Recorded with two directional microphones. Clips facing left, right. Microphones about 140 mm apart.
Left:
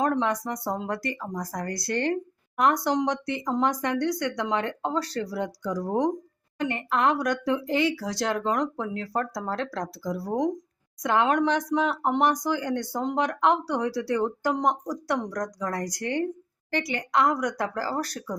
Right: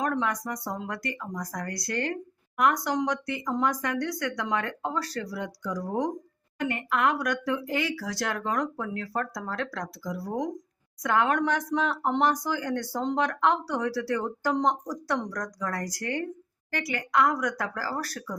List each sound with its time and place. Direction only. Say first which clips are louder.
0.0 s speech: left 3 dB; 25° left (ahead or behind)